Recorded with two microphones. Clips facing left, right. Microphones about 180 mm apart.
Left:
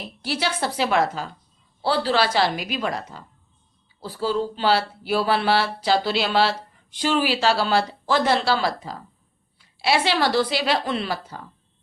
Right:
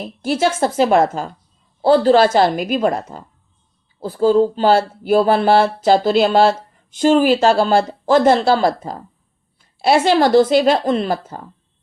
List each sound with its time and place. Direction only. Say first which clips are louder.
0.0 s speech: right 9 dB; 45° right (ahead or behind)